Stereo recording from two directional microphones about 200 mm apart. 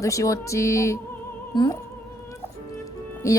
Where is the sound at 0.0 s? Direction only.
15° left (ahead or behind).